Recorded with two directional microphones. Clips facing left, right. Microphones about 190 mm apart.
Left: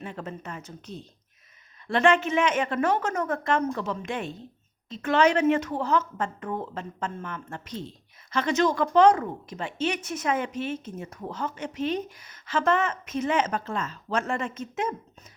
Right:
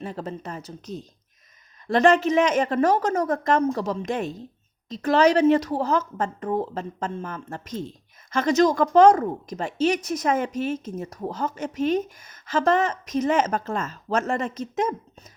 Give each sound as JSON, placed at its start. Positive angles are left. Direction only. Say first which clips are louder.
{"t": 0.0, "sound": "a woman's voice", "louder": "right 4 dB", "side_deg": -35}